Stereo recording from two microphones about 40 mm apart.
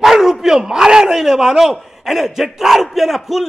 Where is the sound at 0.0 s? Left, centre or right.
Centre.